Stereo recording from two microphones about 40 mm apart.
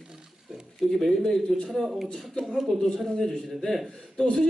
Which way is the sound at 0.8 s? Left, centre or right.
Centre.